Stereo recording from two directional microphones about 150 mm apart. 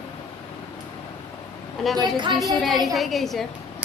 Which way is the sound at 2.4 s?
Centre (ahead or behind).